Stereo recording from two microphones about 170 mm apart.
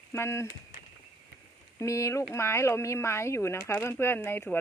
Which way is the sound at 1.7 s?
20° left (ahead or behind).